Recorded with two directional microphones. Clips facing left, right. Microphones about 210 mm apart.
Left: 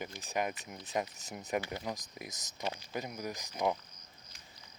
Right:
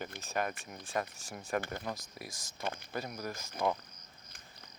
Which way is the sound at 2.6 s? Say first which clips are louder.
Even; 55° right (ahead or behind).